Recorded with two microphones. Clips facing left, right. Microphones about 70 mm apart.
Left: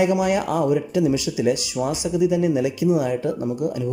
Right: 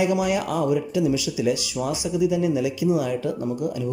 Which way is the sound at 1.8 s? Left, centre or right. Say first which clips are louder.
Left 3 dB; centre.